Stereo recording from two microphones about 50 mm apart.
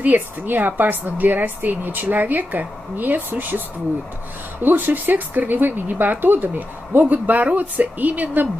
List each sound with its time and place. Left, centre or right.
0.0 s speech: right
4.6 s speech: right